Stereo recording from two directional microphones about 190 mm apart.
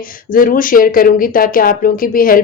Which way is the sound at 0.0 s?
45° left (ahead or behind).